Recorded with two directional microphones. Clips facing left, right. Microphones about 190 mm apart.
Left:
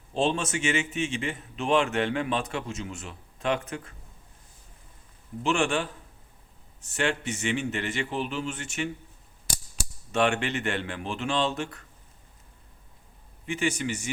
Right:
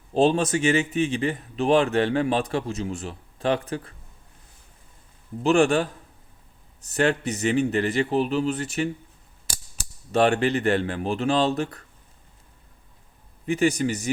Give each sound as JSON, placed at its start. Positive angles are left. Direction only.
{"t": 0.1, "sound": "a man's voice", "side_deg": -40}
{"t": 5.4, "sound": "a man's voice", "side_deg": -40}
{"t": 10.1, "sound": "a man's voice", "side_deg": -35}
{"t": 13.4, "sound": "a man's voice", "side_deg": -40}